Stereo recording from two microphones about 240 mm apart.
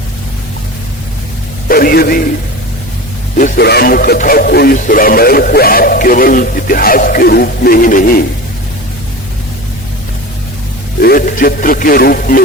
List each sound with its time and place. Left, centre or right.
1.6 s speech: left
3.3 s speech: left
11.0 s speech: left